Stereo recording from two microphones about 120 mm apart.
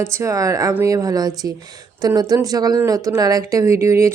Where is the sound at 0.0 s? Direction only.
25° right (ahead or behind).